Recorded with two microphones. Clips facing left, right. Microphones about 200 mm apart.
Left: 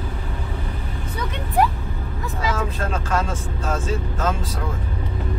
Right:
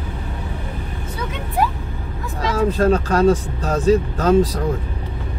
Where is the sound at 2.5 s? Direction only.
35° right (ahead or behind).